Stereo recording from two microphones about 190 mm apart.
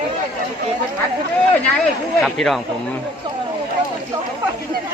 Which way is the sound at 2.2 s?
Centre (ahead or behind).